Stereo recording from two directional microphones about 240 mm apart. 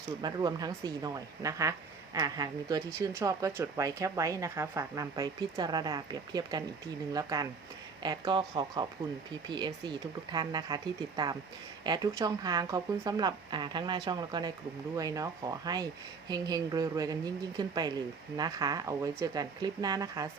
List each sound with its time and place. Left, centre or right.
0.2 s speech: centre
11.8 s speech: centre